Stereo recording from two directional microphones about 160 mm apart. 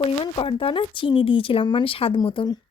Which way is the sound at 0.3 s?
35° left (ahead or behind).